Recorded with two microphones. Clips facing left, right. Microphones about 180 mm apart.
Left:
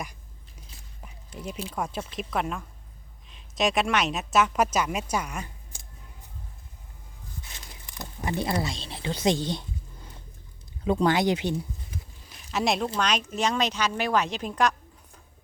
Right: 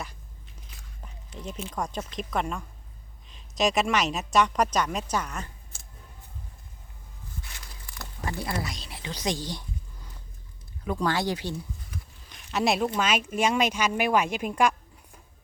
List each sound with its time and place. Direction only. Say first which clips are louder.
1.0 s squish: left 1 dB; 5° left (ahead or behind)
1.7 s a woman's voice: right 1 dB; 5° left (ahead or behind)
7.4 s a sound: left 1 dB; 20° left (ahead or behind)
8.5 s a woman's voice: left 4 dB; 25° left (ahead or behind)
12.3 s a sound: right 1 dB; centre (ahead or behind)
13.0 s speech: right 1 dB; 5° right (ahead or behind)